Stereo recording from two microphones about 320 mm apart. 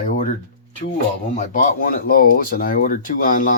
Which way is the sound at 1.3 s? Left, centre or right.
Left.